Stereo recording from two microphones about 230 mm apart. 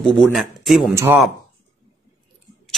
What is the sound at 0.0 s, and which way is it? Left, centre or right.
Speech, centre.